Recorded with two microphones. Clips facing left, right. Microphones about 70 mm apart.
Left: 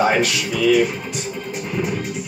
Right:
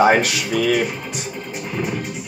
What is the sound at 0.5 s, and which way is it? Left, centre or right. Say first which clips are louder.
Music: left 3 dB; right.